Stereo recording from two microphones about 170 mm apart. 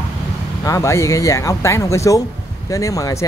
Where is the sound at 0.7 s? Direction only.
20° left (ahead or behind).